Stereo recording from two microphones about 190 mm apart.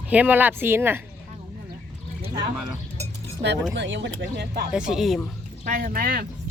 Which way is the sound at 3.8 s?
70° right (ahead or behind).